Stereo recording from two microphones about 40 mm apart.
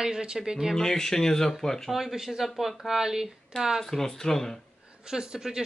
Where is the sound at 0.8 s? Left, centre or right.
Centre.